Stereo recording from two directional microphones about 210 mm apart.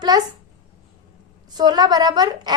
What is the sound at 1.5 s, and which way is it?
A woman's voice, 20° right (ahead or behind).